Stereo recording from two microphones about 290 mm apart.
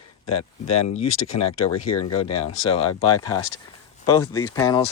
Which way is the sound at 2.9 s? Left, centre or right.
Left.